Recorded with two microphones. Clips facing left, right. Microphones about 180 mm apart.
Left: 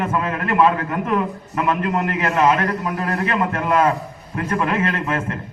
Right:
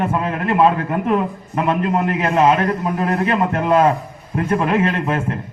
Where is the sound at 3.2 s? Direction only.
30° right (ahead or behind).